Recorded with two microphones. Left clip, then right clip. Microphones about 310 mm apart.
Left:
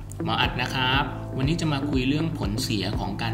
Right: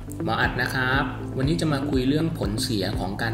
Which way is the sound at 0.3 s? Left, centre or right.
Centre.